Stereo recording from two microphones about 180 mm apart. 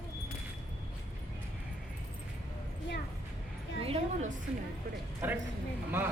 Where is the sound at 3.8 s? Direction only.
30° right (ahead or behind).